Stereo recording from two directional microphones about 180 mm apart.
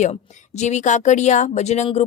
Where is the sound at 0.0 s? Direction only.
40° left (ahead or behind).